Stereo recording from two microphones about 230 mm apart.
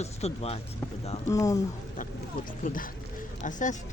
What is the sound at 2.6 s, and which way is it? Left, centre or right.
Speech, left.